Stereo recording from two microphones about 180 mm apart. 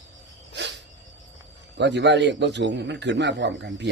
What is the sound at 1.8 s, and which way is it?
A man's voice, 75° right (ahead or behind).